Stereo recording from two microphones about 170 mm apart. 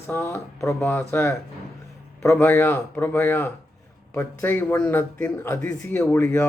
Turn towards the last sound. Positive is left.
turn(degrees=10)  # may be behind; listen again after turning